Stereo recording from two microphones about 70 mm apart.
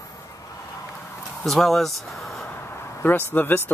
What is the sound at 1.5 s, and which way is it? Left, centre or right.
Speech, centre.